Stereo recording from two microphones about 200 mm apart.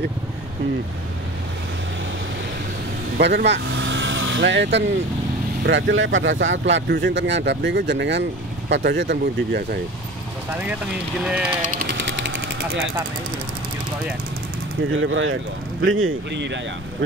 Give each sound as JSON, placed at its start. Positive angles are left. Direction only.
{"t": 3.2, "sound": "speech", "side_deg": -60}
{"t": 11.2, "sound": "speech", "side_deg": -5}
{"t": 12.0, "sound": "a sound", "side_deg": -65}
{"t": 14.9, "sound": "speech", "side_deg": -75}